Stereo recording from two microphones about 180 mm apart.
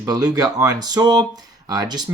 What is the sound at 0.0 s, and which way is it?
Speech, 20° right (ahead or behind).